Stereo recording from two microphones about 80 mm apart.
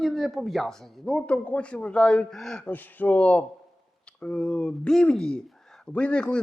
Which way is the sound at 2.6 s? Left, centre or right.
Left.